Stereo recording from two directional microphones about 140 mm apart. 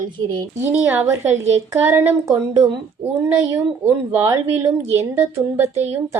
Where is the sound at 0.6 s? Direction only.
15° right (ahead or behind).